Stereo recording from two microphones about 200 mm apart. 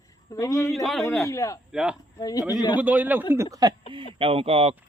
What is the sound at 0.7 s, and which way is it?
Speech, centre (ahead or behind).